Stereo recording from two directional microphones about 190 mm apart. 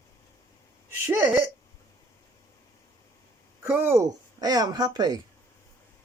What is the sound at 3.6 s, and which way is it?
Speech, 15° right (ahead or behind).